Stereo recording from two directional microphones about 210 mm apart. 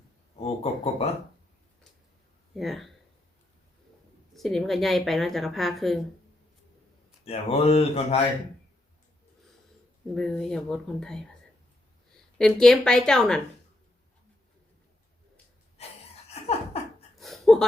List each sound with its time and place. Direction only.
0.3 s speech: 30° left (ahead or behind)
2.6 s a woman's voice: centre (ahead or behind)
4.4 s a woman's voice: centre (ahead or behind)
7.3 s speech: 30° left (ahead or behind)
10.2 s a woman's voice: centre (ahead or behind)
12.4 s a woman's voice: centre (ahead or behind)
16.3 s laughter: 30° left (ahead or behind)
17.2 s a sound: centre (ahead or behind)